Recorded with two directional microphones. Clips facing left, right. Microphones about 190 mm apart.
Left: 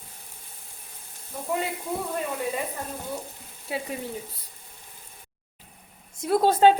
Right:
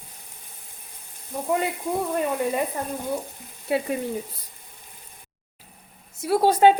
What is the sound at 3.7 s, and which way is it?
Speech, 65° right (ahead or behind).